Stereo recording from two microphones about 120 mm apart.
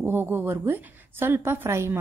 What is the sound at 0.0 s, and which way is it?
A woman's voice, 20° right (ahead or behind).